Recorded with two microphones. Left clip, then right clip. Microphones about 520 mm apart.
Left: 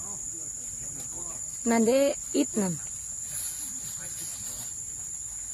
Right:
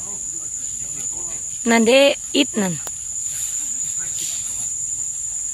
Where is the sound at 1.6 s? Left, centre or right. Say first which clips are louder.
Right 10 dB; left.